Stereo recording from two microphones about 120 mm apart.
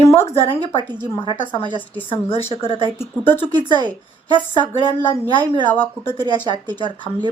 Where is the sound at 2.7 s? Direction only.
40° right (ahead or behind).